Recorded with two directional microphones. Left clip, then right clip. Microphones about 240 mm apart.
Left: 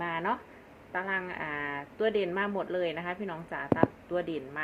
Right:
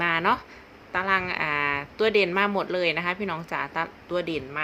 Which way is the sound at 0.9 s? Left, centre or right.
Right.